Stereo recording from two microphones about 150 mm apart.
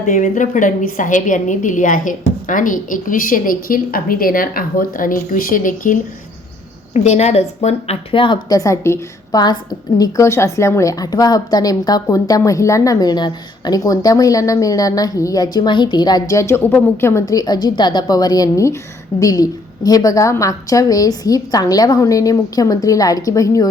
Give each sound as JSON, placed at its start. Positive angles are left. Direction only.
{"t": 0.0, "sound": "a woman's voice", "side_deg": 55}
{"t": 6.9, "sound": "a woman's voice", "side_deg": 50}